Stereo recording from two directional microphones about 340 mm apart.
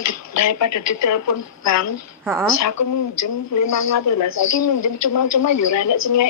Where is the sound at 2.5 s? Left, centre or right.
Left.